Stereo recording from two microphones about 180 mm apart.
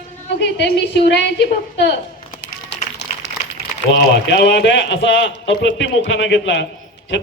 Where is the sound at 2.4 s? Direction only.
75° left (ahead or behind).